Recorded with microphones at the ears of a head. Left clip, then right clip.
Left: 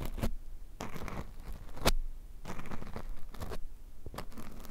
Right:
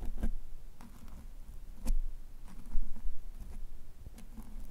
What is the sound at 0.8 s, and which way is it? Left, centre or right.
Zipper, left.